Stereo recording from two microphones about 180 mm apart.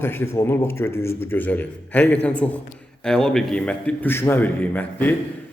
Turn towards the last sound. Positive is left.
turn(degrees=10)  # may be behind; listen again after turning